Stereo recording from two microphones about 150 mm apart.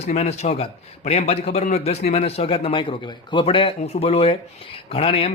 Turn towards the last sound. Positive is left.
turn(degrees=40)  # may be behind; listen again after turning